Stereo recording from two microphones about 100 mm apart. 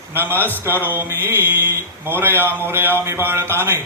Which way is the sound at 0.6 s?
20° right (ahead or behind).